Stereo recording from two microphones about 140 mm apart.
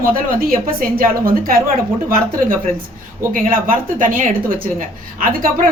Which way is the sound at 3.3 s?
80° right.